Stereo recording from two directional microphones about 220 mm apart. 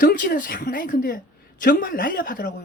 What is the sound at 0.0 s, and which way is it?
A man's voice, 40° left (ahead or behind).